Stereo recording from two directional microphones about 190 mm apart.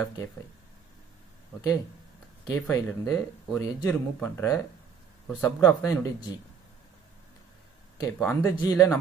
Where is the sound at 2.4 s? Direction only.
15° left (ahead or behind).